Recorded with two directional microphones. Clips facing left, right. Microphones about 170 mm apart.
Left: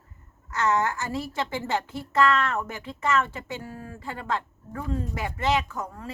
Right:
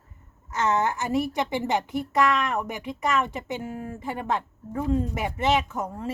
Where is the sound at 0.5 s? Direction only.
20° right (ahead or behind).